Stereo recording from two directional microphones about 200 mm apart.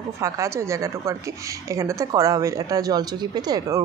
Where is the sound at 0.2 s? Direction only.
15° right (ahead or behind).